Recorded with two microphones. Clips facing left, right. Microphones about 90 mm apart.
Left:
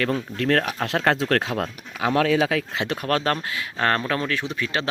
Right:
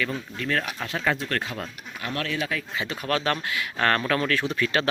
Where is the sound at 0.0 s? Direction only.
70° left (ahead or behind).